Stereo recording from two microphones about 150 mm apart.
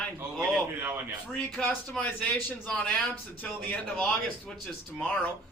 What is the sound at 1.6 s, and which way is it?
Speech, 5° left (ahead or behind).